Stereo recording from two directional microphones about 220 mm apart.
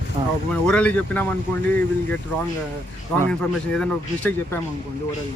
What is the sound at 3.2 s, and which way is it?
A man's voice, 5° left (ahead or behind).